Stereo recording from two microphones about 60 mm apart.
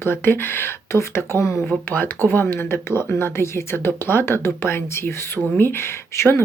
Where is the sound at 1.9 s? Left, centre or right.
Left.